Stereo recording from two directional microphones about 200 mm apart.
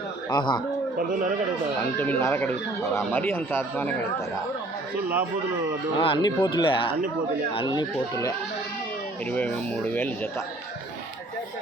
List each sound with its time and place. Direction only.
0.3 s speech: 20° left (ahead or behind)
2.0 s speech: 10° left (ahead or behind)
6.0 s speech: 25° left (ahead or behind)